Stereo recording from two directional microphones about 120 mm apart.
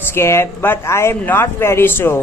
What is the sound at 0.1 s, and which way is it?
Speech, 20° left (ahead or behind).